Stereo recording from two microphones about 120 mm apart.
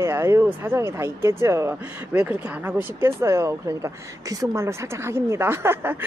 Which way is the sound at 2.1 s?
10° right (ahead or behind).